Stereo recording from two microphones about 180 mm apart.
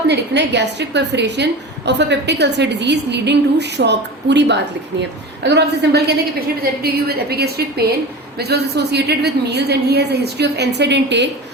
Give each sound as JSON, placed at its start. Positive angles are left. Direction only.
{"t": 0.1, "sound": "a woman's voice", "side_deg": -70}